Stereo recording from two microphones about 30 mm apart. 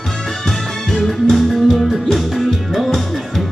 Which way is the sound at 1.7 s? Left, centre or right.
Centre.